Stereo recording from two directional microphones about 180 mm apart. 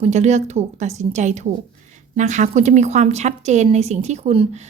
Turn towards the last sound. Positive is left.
turn(degrees=-35)  # may be behind; listen again after turning